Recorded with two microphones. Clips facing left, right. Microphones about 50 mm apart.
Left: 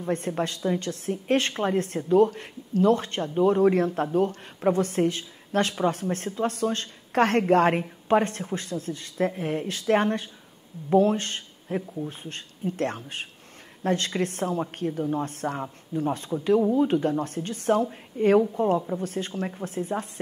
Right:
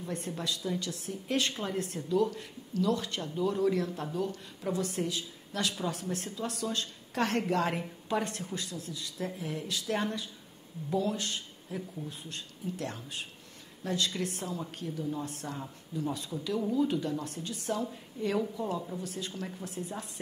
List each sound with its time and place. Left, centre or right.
0.0 s a woman's voice: left